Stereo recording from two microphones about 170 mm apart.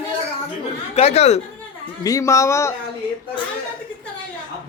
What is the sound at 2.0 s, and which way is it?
Speech, 20° left (ahead or behind).